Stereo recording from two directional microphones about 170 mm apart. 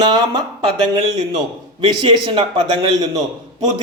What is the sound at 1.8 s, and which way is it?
Speech, 30° right (ahead or behind).